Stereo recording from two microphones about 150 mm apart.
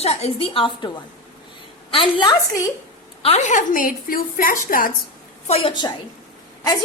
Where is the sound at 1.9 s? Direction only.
35° left (ahead or behind).